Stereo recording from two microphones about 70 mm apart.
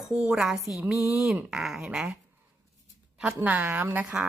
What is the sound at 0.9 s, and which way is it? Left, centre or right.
Speech, left.